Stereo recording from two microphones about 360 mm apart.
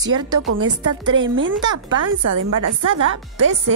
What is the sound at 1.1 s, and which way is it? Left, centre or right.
Speech, right.